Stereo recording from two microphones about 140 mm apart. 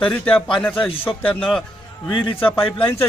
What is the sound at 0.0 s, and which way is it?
A man's voice, 10° left (ahead or behind).